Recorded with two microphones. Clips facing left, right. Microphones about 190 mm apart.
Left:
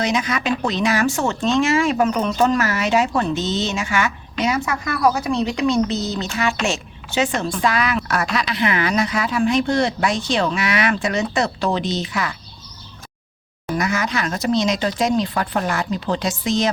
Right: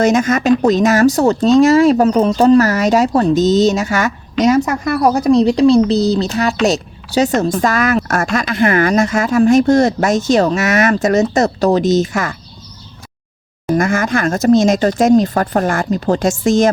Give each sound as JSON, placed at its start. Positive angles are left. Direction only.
{"t": 0.0, "sound": "speech", "side_deg": -45}
{"t": 13.7, "sound": "speech", "side_deg": -50}